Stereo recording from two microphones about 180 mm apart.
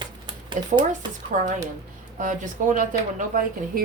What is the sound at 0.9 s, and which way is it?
Speech, 45° right (ahead or behind).